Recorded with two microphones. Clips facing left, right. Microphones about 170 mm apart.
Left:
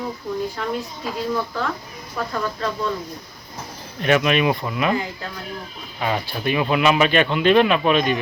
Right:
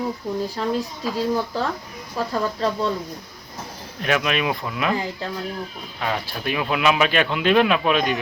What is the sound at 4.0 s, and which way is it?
Speech, centre (ahead or behind).